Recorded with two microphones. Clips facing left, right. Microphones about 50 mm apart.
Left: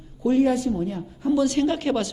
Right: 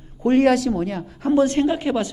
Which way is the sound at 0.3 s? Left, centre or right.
Right.